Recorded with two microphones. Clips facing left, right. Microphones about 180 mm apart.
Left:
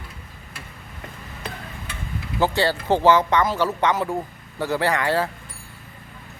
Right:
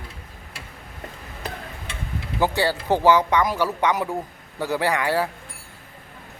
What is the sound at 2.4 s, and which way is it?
Speech, 15° right (ahead or behind).